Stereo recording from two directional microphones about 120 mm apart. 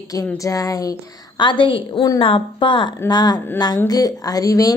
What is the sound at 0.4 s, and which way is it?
Speech, 30° left (ahead or behind).